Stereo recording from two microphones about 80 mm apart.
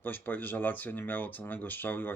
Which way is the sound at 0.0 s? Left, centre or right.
Left.